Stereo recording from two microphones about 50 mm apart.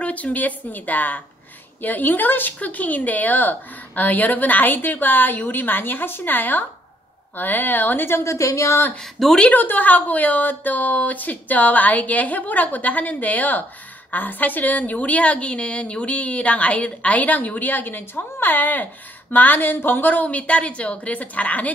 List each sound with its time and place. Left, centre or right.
0.0 s a woman's voice: left
8.2 s a woman's voice: left
9.5 s a woman's voice: left